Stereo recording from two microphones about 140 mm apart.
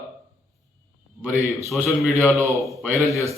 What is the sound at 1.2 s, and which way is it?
A man's voice, centre (ahead or behind).